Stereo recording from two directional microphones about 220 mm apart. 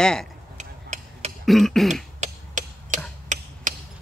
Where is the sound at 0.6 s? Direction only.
30° right (ahead or behind).